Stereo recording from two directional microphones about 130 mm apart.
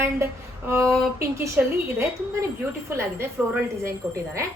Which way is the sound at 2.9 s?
20° right (ahead or behind).